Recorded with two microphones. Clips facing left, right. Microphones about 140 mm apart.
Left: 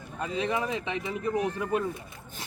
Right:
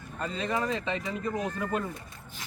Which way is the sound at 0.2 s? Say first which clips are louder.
Left 1 dB; 10° left (ahead or behind).